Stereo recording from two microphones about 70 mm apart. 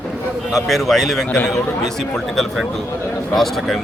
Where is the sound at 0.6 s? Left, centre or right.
Centre.